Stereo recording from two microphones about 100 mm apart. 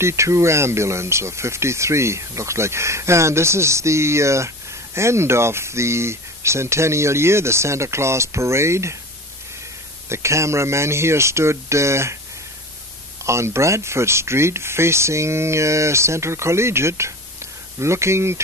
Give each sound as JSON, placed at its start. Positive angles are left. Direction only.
{"t": 0.0, "sound": "speech", "side_deg": -30}
{"t": 10.0, "sound": "speech", "side_deg": -25}
{"t": 13.2, "sound": "speech", "side_deg": -30}